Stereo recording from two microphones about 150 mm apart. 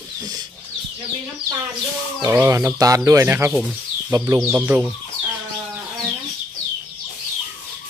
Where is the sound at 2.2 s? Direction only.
20° right (ahead or behind).